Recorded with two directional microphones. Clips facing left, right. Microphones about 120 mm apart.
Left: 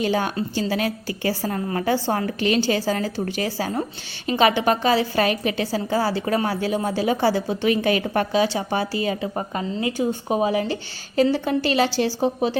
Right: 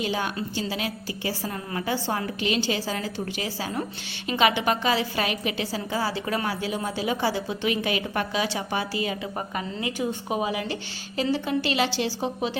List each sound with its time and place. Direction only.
0.0 s a woman's voice: 45° left (ahead or behind)